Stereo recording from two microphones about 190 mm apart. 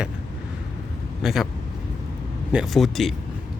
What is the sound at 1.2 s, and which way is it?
Speech, centre (ahead or behind).